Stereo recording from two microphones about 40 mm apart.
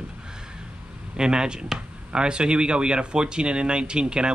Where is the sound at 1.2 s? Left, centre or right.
Centre.